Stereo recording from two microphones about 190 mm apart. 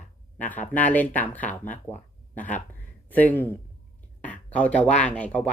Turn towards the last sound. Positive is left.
turn(degrees=5)  # may be behind; listen again after turning